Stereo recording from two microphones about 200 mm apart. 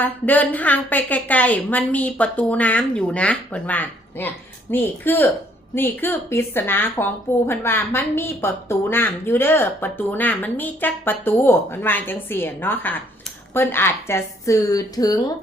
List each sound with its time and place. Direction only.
0.0 s a woman's voice: 10° left (ahead or behind)